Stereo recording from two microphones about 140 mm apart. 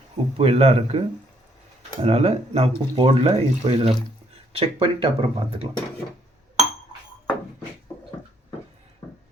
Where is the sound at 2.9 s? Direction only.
35° right (ahead or behind).